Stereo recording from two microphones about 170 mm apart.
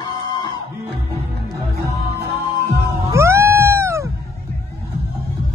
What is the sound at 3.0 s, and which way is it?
Music, 15° right (ahead or behind).